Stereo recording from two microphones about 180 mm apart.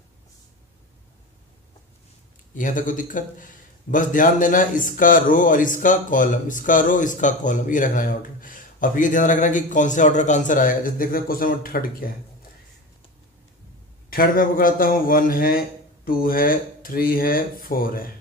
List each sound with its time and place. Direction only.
2.5 s speech: 45° left (ahead or behind)
14.1 s speech: 50° left (ahead or behind)